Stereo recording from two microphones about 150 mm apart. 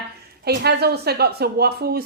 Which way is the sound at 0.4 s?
90° right.